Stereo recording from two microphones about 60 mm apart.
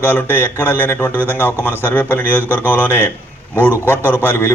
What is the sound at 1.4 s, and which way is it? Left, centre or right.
Speech, left.